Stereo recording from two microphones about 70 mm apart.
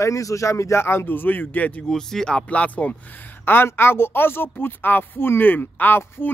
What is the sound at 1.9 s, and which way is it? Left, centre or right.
Speech, centre.